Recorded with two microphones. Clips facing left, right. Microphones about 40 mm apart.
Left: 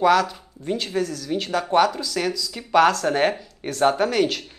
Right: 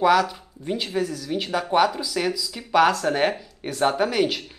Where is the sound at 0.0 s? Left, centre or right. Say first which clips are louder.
Left 1 dB; centre.